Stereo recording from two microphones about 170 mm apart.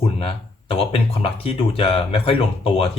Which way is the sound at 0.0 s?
35° left (ahead or behind).